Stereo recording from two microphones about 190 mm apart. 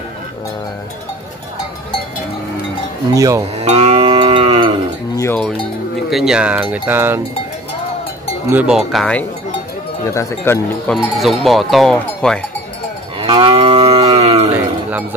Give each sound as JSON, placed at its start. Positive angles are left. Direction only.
{"t": 3.2, "sound": "speech", "side_deg": -15}
{"t": 3.6, "sound": "livestock", "side_deg": -30}
{"t": 5.2, "sound": "speech", "side_deg": 10}
{"t": 8.5, "sound": "speech", "side_deg": -5}
{"t": 10.0, "sound": "speech", "side_deg": 15}
{"t": 11.0, "sound": "speech", "side_deg": 0}
{"t": 13.2, "sound": "moo", "side_deg": -30}